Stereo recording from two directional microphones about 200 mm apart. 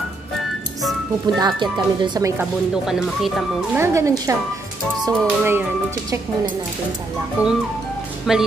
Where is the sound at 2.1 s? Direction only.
15° right (ahead or behind).